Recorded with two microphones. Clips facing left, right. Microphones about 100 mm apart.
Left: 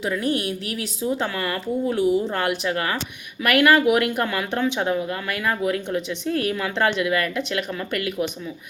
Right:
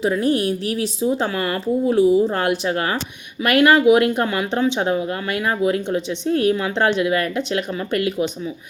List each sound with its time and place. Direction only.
0.0 s a woman's voice: 35° right (ahead or behind)